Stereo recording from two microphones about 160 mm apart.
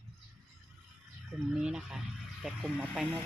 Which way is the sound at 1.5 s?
5° right (ahead or behind).